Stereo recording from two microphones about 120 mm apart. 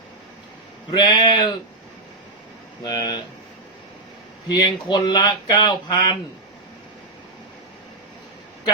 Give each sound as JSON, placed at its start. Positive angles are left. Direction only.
{"t": 0.9, "sound": "speech", "side_deg": 35}
{"t": 2.8, "sound": "speech", "side_deg": 35}
{"t": 4.5, "sound": "speech", "side_deg": 40}